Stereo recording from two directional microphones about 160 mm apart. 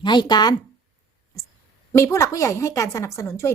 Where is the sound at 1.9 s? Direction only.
15° left (ahead or behind).